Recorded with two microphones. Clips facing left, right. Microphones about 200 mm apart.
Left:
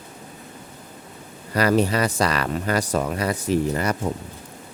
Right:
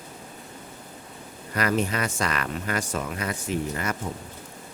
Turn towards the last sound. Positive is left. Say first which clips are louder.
# left 7 dB
turn(degrees=35)  # may be behind; listen again after turning